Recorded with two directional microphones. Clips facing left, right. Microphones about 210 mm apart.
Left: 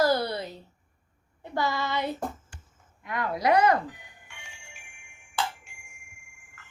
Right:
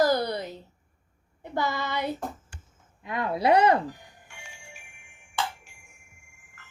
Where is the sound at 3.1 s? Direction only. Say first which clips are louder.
Right 2 dB; 25° right (ahead or behind).